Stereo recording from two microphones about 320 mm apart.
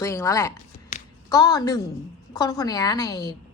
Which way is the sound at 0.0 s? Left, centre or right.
Centre.